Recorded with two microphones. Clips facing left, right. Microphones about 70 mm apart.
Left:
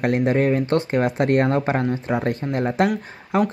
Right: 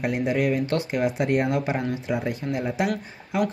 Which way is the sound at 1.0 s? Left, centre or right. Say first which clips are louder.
Left 4 dB; left.